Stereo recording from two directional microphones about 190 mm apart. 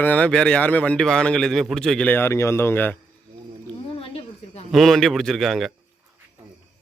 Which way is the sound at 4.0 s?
30° left (ahead or behind).